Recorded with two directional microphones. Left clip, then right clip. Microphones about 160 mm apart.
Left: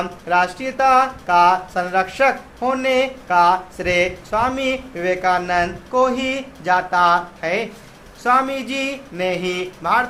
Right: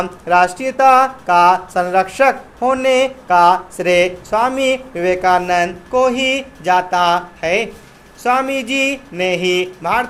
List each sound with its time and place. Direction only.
0.0 s speech: 30° right (ahead or behind)